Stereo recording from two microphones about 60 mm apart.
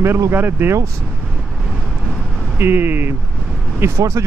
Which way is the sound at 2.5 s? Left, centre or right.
Right.